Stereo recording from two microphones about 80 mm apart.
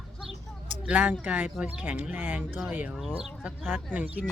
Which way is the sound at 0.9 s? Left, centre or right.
Centre.